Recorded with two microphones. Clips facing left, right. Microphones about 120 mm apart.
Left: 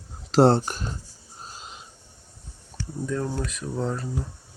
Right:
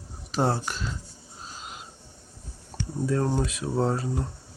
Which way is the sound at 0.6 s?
45° left (ahead or behind).